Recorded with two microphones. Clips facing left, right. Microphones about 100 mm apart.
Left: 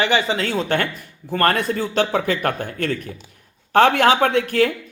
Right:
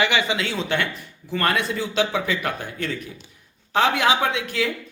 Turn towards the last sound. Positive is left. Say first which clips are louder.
# left 6 dB
turn(degrees=50)  # may be behind; listen again after turning